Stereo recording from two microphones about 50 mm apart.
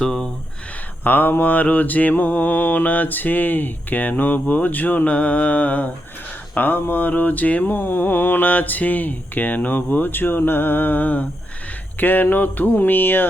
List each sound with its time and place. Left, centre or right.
0.0 s speech: centre
1.0 s mantra: left
6.5 s mantra: left